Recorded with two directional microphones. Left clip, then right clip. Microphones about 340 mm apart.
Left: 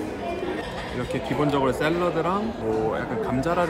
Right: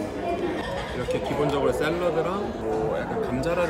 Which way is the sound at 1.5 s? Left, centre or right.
Centre.